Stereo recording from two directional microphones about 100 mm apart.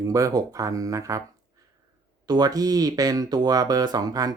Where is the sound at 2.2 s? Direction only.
40° right (ahead or behind).